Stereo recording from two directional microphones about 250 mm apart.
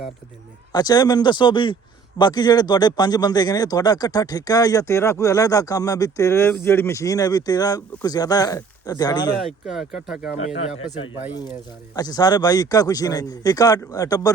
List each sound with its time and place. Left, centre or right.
0.7 s speech: centre
9.5 s speech: centre
11.9 s speech: centre